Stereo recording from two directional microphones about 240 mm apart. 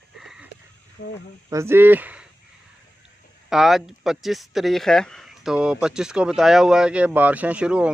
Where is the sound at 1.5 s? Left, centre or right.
Centre.